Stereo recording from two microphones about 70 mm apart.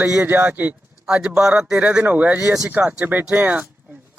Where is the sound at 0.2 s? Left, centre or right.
Right.